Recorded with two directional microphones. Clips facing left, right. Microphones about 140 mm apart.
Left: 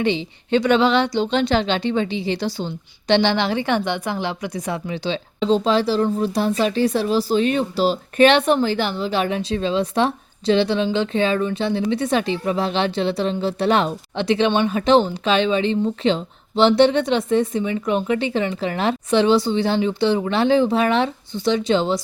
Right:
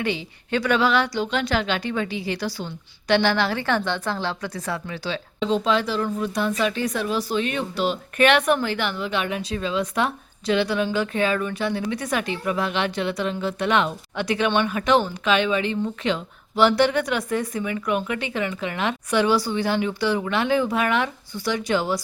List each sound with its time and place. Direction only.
0.0 s a woman's voice: 25° left (ahead or behind)
5.4 s a woman's voice: 30° left (ahead or behind)